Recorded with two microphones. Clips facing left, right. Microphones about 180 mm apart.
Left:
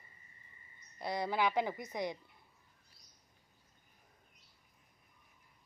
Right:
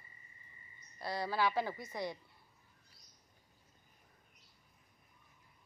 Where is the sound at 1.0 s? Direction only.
20° left (ahead or behind).